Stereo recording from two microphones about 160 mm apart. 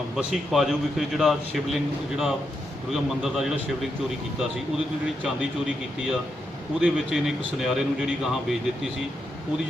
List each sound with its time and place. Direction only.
0.2 s a man's voice: centre (ahead or behind)
5.2 s a man's voice: 5° right (ahead or behind)